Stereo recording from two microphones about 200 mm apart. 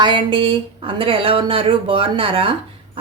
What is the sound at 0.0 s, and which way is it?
Speech, 25° right (ahead or behind).